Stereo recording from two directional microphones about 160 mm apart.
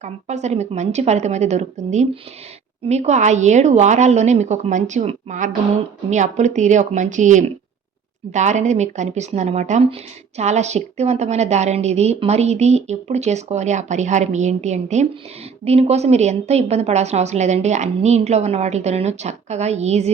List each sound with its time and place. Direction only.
0.0 s a woman's voice: 45° right (ahead or behind)